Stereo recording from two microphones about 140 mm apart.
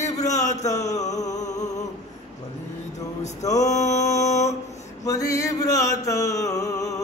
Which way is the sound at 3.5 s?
55° left (ahead or behind).